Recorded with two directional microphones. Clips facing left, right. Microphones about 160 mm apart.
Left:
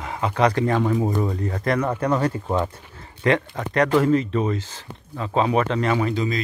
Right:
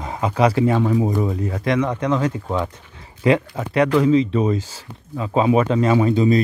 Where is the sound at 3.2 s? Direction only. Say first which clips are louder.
Right 3 dB; 10° right (ahead or behind).